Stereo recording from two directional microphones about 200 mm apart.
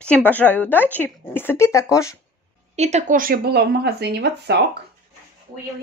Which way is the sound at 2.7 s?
35° right (ahead or behind).